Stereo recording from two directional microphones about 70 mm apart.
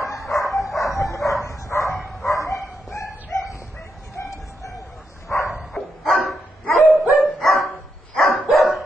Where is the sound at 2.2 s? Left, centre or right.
Left.